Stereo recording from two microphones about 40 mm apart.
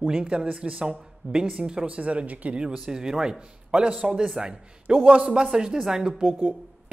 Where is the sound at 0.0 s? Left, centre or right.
Right.